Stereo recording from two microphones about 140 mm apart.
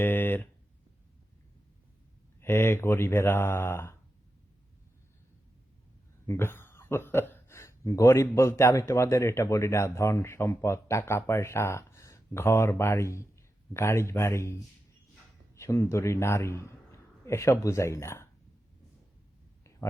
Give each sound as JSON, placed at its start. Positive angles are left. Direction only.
{"t": 0.0, "sound": "a sound", "side_deg": 15}
{"t": 2.4, "sound": "speech", "side_deg": 15}
{"t": 6.2, "sound": "speech", "side_deg": 15}